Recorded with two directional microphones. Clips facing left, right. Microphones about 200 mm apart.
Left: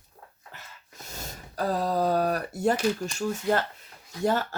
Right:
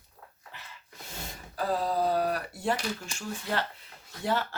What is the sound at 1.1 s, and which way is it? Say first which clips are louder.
Speech: left 1 dB; 40° left (ahead or behind).